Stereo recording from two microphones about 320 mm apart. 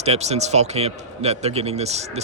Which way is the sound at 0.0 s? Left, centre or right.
Centre.